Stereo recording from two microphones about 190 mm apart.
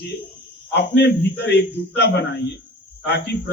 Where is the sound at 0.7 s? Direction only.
60° left (ahead or behind).